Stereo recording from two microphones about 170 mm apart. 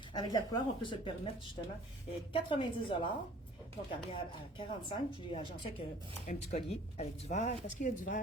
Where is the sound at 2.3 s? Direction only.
30° left (ahead or behind).